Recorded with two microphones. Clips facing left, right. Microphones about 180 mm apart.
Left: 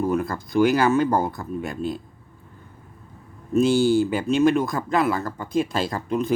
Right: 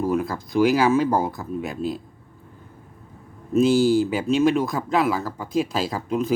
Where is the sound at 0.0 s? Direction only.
Centre (ahead or behind).